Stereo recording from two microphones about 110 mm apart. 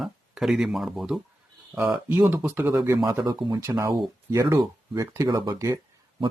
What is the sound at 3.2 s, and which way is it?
Speech, 35° right (ahead or behind).